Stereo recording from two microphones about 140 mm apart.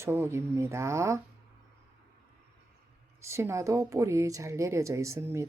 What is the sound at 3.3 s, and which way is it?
Speech, 20° right (ahead or behind).